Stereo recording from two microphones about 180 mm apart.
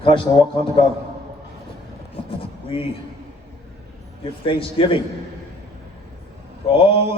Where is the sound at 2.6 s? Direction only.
30° left (ahead or behind).